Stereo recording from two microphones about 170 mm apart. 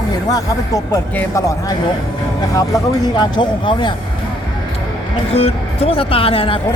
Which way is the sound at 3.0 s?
25° left (ahead or behind).